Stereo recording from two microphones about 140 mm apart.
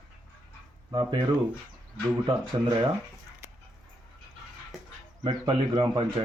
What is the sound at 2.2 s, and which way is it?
Speech, 30° right (ahead or behind).